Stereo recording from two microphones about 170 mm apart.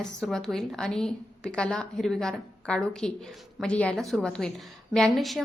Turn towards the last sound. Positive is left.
turn(degrees=0)  # may be behind; listen again after turning